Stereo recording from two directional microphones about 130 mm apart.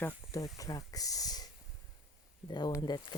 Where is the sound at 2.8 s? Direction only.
35° left (ahead or behind).